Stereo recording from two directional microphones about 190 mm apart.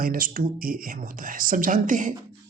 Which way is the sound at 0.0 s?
50° right (ahead or behind).